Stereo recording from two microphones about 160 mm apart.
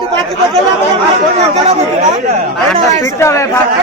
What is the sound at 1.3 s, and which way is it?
Speech, 40° right (ahead or behind).